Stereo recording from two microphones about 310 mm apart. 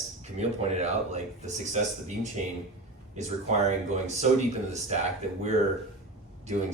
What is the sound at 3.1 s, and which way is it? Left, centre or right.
Speech, right.